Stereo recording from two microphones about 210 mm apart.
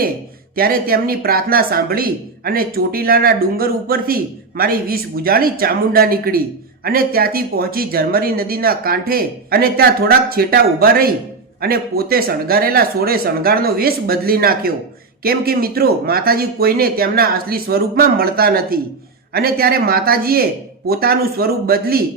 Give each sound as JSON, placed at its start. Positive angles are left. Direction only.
{"t": 0.5, "sound": "speech", "side_deg": -45}